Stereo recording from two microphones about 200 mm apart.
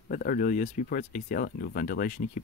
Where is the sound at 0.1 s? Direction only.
45° left (ahead or behind).